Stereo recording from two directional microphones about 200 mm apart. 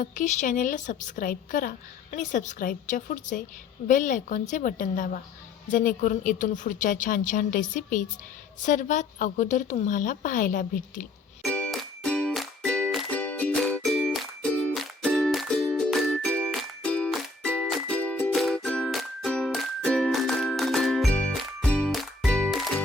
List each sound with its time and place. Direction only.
0.0 s a woman's voice: 40° left (ahead or behind)
11.4 s music: 5° left (ahead or behind)